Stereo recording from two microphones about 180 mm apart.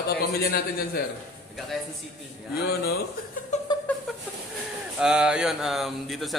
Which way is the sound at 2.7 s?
60° left (ahead or behind).